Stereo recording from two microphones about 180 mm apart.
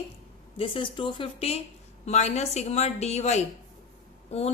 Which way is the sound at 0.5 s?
30° left (ahead or behind).